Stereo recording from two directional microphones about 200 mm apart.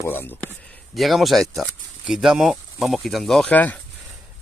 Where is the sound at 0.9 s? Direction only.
Centre (ahead or behind).